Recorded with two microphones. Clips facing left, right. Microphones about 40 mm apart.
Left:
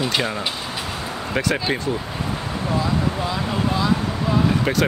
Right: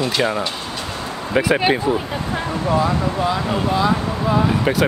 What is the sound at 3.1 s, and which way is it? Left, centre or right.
Speech, centre.